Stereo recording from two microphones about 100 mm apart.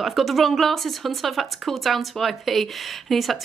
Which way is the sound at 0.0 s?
Centre (ahead or behind).